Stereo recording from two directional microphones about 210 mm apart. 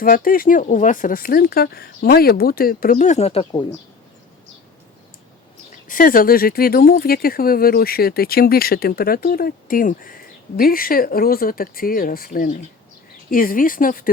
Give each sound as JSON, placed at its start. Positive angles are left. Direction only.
{"t": 0.0, "sound": "speech", "side_deg": 40}
{"t": 5.9, "sound": "speech", "side_deg": 40}